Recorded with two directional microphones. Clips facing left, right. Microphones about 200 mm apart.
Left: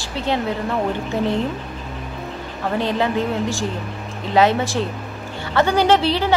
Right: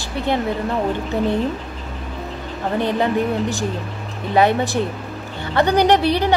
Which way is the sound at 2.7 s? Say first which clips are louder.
Right 1 dB; 15° right (ahead or behind).